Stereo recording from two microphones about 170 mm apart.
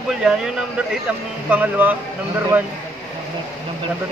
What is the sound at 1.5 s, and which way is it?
Speech, 10° right (ahead or behind).